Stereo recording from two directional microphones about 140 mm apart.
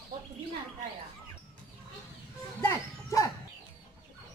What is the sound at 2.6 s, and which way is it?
Dog, 25° left (ahead or behind).